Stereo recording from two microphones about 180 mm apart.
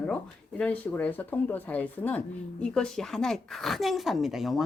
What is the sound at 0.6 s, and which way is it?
Speech, 5° left (ahead or behind).